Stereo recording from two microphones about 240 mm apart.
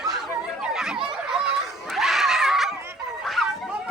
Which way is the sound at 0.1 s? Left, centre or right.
Centre.